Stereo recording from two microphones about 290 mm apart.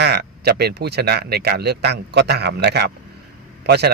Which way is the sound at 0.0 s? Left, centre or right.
Right.